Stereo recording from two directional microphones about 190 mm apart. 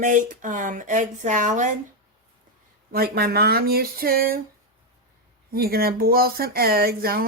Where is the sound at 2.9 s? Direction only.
55° right (ahead or behind).